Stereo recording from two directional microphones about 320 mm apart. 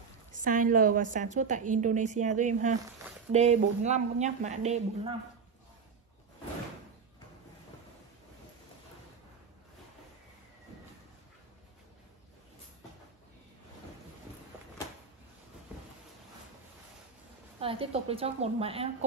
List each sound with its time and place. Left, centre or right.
0.3 s a woman's voice: right
17.6 s a woman's voice: centre